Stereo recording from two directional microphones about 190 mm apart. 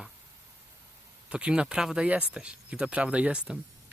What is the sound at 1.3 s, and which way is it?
Speech, 5° right (ahead or behind).